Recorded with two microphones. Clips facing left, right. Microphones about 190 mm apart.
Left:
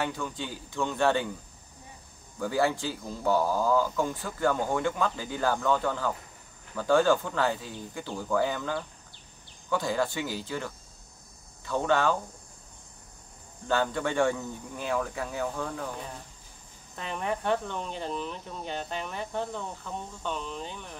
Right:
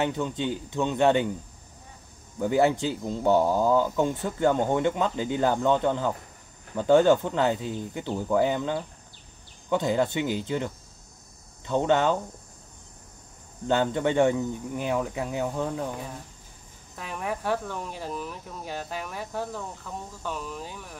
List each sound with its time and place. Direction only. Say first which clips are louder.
0.0 s speech: right 6 dB; 20° right (ahead or behind)
2.3 s speech: right 5 dB; 20° right (ahead or behind)
13.7 s speech: right 4 dB; 20° right (ahead or behind)
16.9 s speech: even; 5° right (ahead or behind)